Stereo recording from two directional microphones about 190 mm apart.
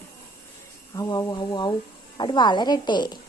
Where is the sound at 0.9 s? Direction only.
20° left (ahead or behind).